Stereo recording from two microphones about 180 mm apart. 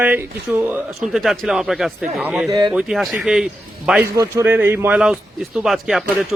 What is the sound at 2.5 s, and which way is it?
Speech, 25° right (ahead or behind).